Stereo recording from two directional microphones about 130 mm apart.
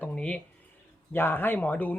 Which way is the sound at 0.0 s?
10° left (ahead or behind).